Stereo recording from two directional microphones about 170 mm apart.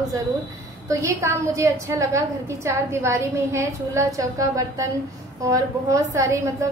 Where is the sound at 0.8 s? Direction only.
20° right (ahead or behind).